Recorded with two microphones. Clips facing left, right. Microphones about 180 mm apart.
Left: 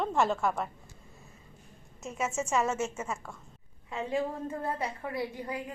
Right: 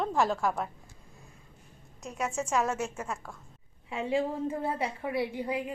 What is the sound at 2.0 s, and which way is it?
A woman's voice, centre (ahead or behind).